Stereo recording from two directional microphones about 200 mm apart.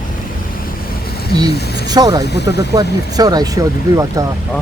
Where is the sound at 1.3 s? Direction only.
20° right (ahead or behind).